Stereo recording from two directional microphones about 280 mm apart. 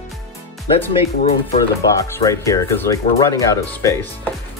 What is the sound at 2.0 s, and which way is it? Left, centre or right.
Speech, centre.